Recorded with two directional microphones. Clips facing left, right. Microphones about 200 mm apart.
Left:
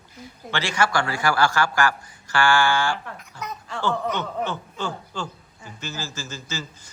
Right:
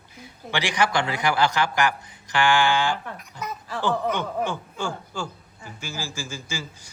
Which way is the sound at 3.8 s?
15° right (ahead or behind).